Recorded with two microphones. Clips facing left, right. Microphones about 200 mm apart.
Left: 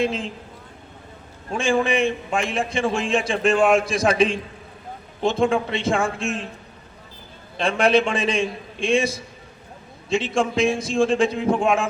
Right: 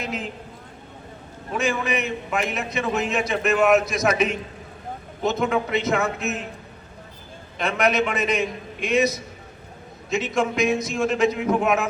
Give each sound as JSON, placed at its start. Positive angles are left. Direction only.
{"t": 0.0, "sound": "a man's voice", "side_deg": 25}
{"t": 1.5, "sound": "a man's voice", "side_deg": 30}
{"t": 7.6, "sound": "a man's voice", "side_deg": 30}